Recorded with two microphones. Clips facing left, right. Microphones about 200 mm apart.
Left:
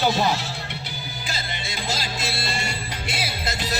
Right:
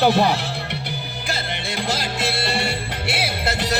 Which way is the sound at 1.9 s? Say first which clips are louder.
Right 5 dB; 60° right (ahead or behind).